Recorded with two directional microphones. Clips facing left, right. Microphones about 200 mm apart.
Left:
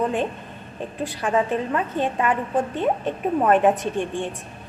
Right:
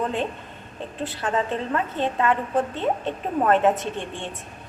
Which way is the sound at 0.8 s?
15° left (ahead or behind).